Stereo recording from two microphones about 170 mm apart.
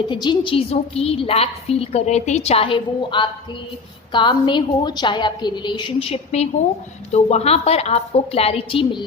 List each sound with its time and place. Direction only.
0.1 s a woman's voice: 25° left (ahead or behind)